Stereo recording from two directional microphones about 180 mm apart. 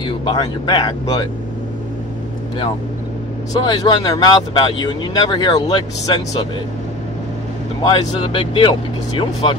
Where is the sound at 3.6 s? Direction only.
25° left (ahead or behind).